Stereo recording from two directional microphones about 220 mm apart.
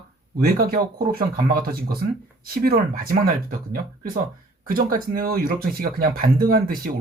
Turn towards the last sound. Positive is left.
turn(degrees=-40)  # may be behind; listen again after turning